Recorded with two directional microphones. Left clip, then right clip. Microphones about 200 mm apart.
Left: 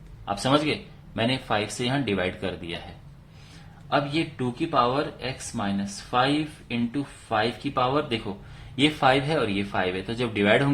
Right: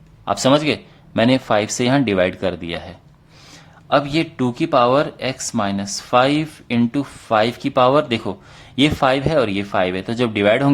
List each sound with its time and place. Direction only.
0.3 s speech: 50° right (ahead or behind)
3.8 s speech: 50° right (ahead or behind)